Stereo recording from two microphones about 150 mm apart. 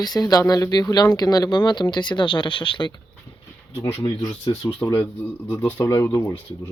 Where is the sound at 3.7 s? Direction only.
20° left (ahead or behind).